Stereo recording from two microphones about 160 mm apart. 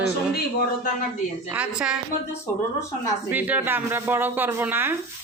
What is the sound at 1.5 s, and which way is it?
Speech, 5° right (ahead or behind).